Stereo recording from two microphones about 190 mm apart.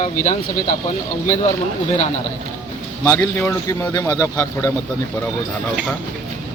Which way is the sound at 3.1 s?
15° left (ahead or behind).